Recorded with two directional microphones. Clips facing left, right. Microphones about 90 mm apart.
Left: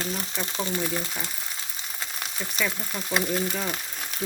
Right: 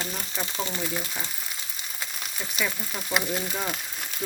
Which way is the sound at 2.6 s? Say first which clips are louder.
Left 1 dB; 5° right (ahead or behind).